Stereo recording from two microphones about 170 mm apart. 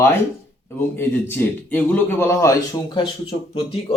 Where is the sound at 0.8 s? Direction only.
15° left (ahead or behind).